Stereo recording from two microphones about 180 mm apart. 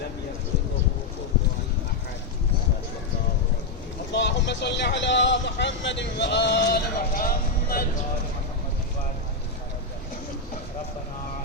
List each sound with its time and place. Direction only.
4.1 s speech: 75° left (ahead or behind); by 7.9 s 55° left (ahead or behind)